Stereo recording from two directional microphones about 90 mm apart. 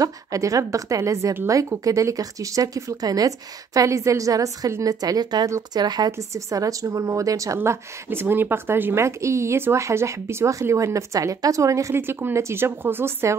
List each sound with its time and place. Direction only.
0.0 s a woman's voice: 40° right (ahead or behind)
6.1 s a woman's voice: 40° right (ahead or behind)